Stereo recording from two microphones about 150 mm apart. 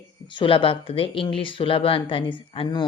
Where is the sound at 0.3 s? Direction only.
35° left (ahead or behind).